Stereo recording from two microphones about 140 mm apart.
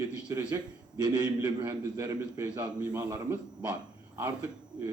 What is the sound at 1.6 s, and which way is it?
A man's voice, 20° right (ahead or behind).